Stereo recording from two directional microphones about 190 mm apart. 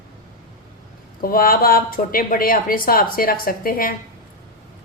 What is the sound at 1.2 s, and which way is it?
Speech, 50° left (ahead or behind).